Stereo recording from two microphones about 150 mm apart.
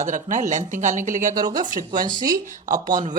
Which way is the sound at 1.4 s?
25° right (ahead or behind).